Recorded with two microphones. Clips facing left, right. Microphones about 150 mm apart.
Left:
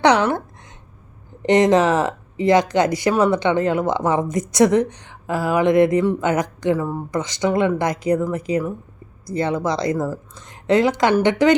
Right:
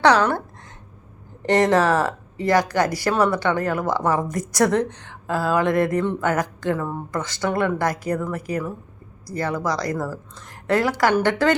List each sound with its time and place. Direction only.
0.0 s a woman's voice: 20° left (ahead or behind)
1.4 s a woman's voice: 20° left (ahead or behind)
6.7 s speech: 5° left (ahead or behind)
7.1 s a woman's voice: 20° left (ahead or behind)